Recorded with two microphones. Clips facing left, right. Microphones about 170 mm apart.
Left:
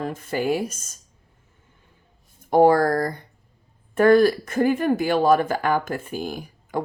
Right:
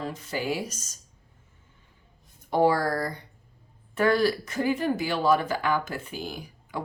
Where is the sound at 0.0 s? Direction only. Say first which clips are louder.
Left 6 dB; 50° left (ahead or behind).